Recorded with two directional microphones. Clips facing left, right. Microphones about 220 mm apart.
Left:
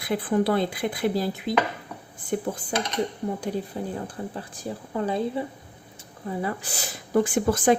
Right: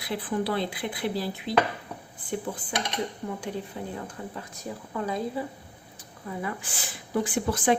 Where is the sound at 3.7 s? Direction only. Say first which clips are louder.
Left 4 dB; 35° left (ahead or behind).